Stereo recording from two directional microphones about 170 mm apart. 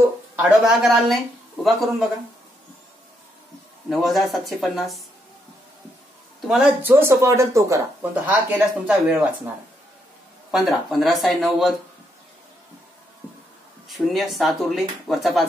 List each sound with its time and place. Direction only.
0.4 s speech: centre (ahead or behind)
3.9 s speech: centre (ahead or behind)
6.5 s speech: 10° right (ahead or behind)
10.5 s speech: centre (ahead or behind)
13.8 s speech: centre (ahead or behind)